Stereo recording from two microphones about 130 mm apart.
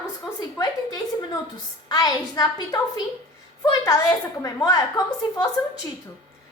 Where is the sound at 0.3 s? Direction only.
30° left (ahead or behind).